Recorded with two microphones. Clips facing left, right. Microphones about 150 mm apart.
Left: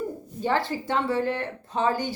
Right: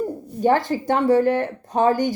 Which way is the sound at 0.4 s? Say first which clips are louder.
Right 7 dB; 45° right (ahead or behind).